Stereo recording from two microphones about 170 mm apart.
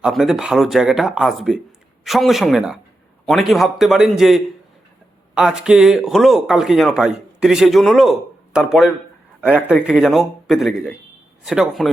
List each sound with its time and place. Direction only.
0.0 s a man's voice: centre (ahead or behind)